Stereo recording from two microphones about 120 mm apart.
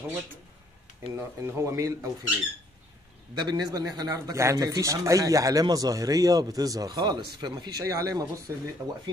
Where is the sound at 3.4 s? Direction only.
30° right (ahead or behind).